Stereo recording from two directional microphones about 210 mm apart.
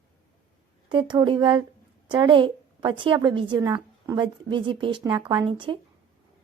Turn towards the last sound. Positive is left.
turn(degrees=-25)  # may be behind; listen again after turning